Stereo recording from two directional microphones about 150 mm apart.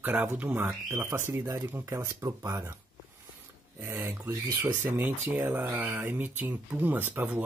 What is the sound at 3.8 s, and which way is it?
Speech, 15° right (ahead or behind).